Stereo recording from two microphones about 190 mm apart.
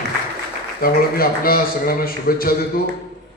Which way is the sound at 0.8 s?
50° left (ahead or behind).